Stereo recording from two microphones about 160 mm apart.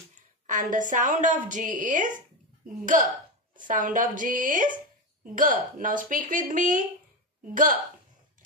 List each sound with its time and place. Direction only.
0.5 s a woman's voice: 55° right (ahead or behind)